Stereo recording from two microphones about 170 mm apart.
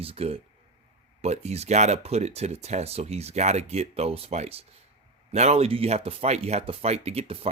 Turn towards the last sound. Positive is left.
turn(degrees=-35)  # may be behind; listen again after turning